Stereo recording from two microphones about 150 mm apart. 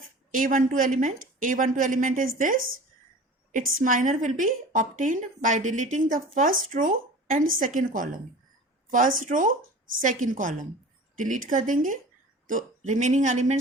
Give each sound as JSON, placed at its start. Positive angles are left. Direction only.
{"t": 0.3, "sound": "a woman's voice", "side_deg": -65}